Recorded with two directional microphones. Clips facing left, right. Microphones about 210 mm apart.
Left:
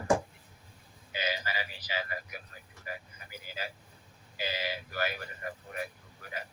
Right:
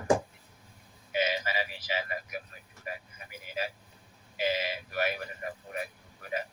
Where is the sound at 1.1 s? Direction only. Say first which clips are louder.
Right 5 dB; 25° right (ahead or behind).